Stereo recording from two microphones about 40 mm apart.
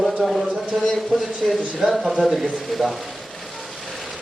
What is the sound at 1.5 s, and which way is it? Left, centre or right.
Speech, centre.